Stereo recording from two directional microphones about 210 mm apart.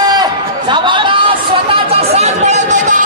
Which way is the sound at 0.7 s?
20° right (ahead or behind).